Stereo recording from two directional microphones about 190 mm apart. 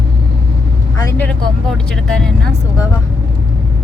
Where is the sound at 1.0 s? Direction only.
15° left (ahead or behind).